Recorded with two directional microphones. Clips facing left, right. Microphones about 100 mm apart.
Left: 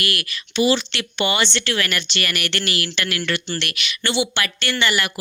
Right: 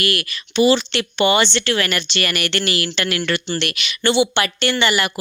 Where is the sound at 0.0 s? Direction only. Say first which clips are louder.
Right 4 dB; 35° right (ahead or behind).